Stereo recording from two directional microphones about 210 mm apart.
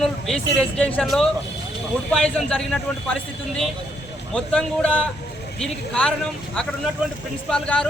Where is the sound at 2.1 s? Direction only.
Centre (ahead or behind).